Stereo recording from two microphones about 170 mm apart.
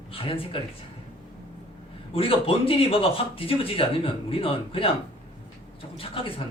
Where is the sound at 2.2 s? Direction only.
35° left (ahead or behind).